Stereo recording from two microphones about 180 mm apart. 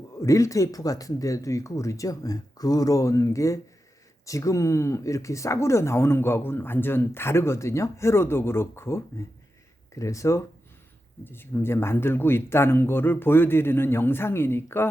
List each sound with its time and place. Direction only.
0.2 s speech: 15° left (ahead or behind)